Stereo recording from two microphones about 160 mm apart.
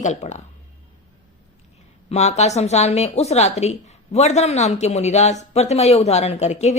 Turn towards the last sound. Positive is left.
turn(degrees=45)  # may be behind; listen again after turning